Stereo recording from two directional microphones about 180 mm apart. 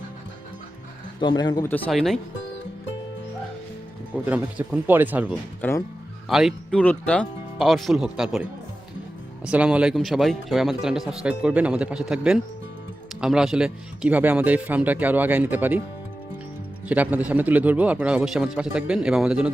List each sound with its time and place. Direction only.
1.2 s a man's voice: 25° left (ahead or behind)
1.7 s speech: 5° left (ahead or behind)
4.3 s speech: 5° right (ahead or behind)
5.6 s speech: 10° left (ahead or behind)
6.2 s speech: centre (ahead or behind)
9.5 s speech: 5° right (ahead or behind)
16.9 s speech: 10° right (ahead or behind)